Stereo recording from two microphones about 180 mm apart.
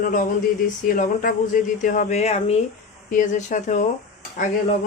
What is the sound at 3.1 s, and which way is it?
Speech, 45° left (ahead or behind).